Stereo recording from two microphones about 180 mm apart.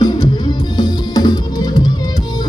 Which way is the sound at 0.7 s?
20° left (ahead or behind).